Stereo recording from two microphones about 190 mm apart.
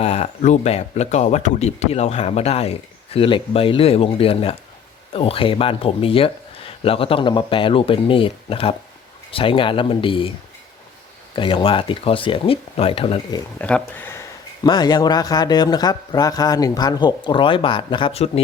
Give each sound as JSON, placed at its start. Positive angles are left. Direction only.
{"t": 0.0, "sound": "a man's voice", "side_deg": 35}
{"t": 11.3, "sound": "a man's voice", "side_deg": 25}
{"t": 13.6, "sound": "speech", "side_deg": 5}
{"t": 14.6, "sound": "a man's voice", "side_deg": 20}